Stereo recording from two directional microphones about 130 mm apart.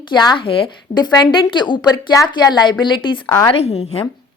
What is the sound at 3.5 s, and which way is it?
Speech, 50° left (ahead or behind).